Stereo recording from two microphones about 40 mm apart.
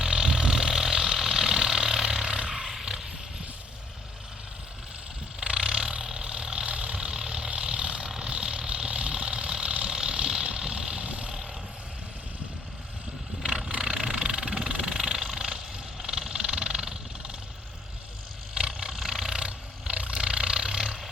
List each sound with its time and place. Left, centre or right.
0.0 s vehicle: centre
2.5 s a sound: centre
5.4 s vehicle: right
6.7 s vehicle: right
11.0 s vehicle: right
13.4 s vehicle: centre
18.9 s a sound: centre
19.4 s roar: right
20.1 s a sound: right